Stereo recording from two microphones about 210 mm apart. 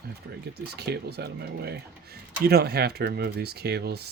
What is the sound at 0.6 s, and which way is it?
Speech, 50° right (ahead or behind).